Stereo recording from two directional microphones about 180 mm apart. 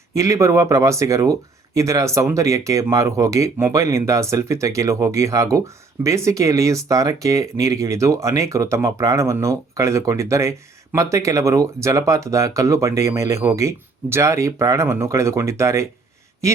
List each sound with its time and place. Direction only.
0.2 s speech: 15° right (ahead or behind)